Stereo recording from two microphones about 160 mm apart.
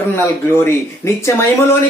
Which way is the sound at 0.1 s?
15° left (ahead or behind).